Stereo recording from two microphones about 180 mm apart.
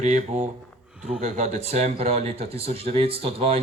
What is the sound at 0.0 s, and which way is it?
Speech, 40° right (ahead or behind).